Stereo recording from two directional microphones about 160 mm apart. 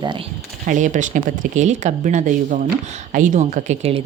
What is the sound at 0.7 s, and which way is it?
Speech, 50° right (ahead or behind).